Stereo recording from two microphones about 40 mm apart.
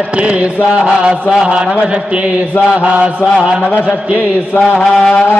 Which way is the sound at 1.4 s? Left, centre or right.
Right.